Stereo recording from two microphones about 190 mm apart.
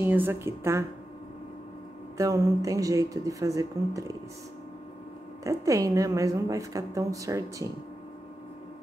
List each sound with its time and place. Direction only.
0.0 s a woman's voice: 10° right (ahead or behind)
2.1 s a woman's voice: 15° right (ahead or behind)
5.4 s a woman's voice: 15° right (ahead or behind)